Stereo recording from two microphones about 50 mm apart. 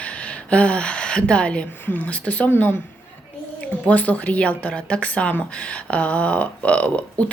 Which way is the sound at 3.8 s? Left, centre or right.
Left.